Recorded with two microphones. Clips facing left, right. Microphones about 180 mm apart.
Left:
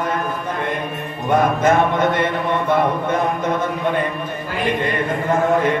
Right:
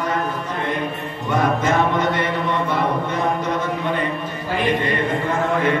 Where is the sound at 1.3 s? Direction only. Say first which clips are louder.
Left 4 dB; 50° left (ahead or behind).